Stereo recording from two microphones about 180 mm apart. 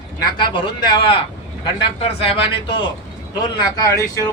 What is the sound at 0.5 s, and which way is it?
A man's voice, 25° left (ahead or behind).